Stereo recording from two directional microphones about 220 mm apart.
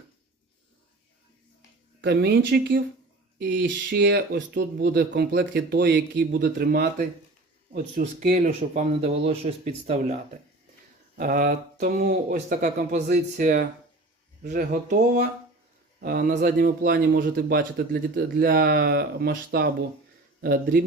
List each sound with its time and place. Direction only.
2.0 s a man's voice: 50° right (ahead or behind)
8.2 s speech: 30° right (ahead or behind)
11.2 s a man's voice: 40° right (ahead or behind)